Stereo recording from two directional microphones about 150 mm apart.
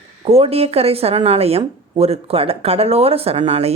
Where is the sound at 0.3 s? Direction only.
40° right (ahead or behind).